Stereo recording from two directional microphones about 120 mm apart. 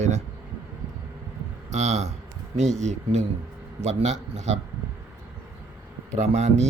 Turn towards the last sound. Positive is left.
turn(degrees=-70)  # may be behind; listen again after turning